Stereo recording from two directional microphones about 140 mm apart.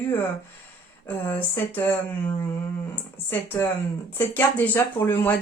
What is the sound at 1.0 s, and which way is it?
Speech, 15° left (ahead or behind).